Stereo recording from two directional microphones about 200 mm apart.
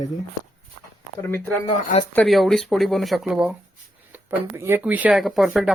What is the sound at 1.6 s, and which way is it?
Speech, 25° left (ahead or behind).